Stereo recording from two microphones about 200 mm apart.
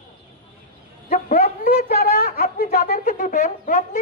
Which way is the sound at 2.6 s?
35° left (ahead or behind).